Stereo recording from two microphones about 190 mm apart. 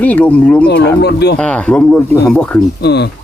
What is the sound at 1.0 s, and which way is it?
Speech, 60° left (ahead or behind).